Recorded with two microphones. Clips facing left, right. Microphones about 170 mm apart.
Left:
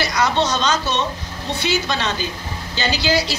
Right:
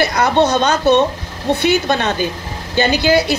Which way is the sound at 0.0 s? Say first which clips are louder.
Right 6 dB; 55° right (ahead or behind).